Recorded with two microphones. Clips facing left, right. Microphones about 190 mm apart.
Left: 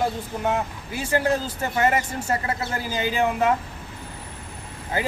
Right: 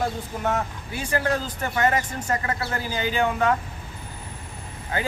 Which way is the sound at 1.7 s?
10° left (ahead or behind).